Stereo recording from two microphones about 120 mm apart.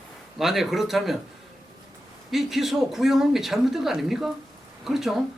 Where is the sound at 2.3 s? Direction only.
Centre (ahead or behind).